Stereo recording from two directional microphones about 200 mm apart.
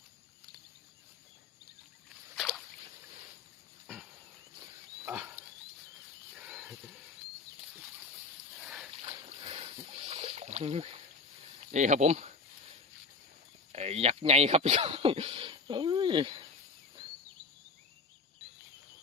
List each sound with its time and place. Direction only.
2.3 s a sound: centre (ahead or behind)
5.0 s pig: 10° right (ahead or behind)
6.4 s wild animals: 5° right (ahead or behind)
8.6 s a sound: 5° right (ahead or behind)
9.0 s rowboat: 30° right (ahead or behind)
11.7 s speech: 35° right (ahead or behind)
13.7 s speech: 30° right (ahead or behind)